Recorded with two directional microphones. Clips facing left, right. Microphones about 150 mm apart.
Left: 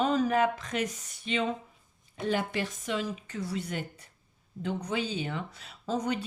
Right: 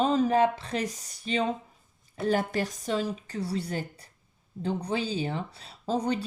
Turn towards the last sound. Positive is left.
turn(degrees=-30)  # may be behind; listen again after turning